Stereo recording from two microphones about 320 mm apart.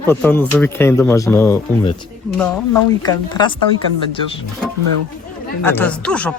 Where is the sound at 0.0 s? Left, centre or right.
Centre.